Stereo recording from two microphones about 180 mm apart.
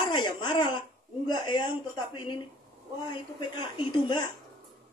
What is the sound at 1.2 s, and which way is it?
Speech, 25° left (ahead or behind).